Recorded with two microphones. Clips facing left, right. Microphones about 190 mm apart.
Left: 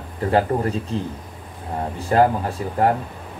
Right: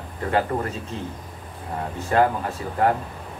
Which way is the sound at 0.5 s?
20° left (ahead or behind).